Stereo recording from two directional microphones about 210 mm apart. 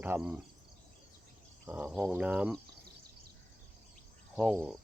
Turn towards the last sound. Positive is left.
turn(degrees=-5)  # may be behind; listen again after turning